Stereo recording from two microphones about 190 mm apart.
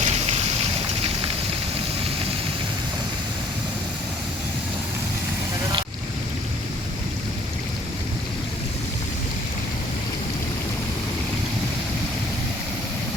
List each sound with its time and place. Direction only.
0.0 s vehicle: 35° right (ahead or behind)